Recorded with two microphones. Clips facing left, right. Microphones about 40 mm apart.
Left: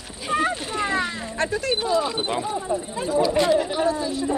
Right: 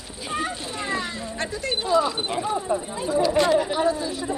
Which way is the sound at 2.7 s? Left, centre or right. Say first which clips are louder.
Even; centre.